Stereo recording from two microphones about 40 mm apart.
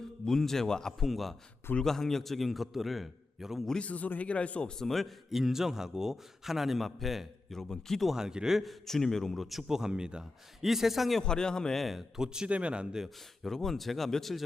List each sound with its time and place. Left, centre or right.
0.3 s speech: centre
0.9 s a man's voice: centre
3.8 s speech: left
4.8 s speech: centre
5.3 s a man's voice: centre
7.5 s speech: centre
8.1 s a man's voice: centre
8.6 s a man's voice: centre; by 10.2 s right
10.6 s a man's voice: centre
11.2 s speech: centre
11.9 s a man's voice: centre
12.5 s speech: right
13.4 s a man's voice: centre